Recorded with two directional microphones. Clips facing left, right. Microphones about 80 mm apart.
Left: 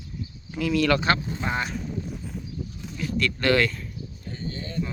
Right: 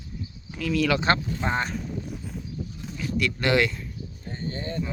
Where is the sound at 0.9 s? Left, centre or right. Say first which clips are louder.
Even; right.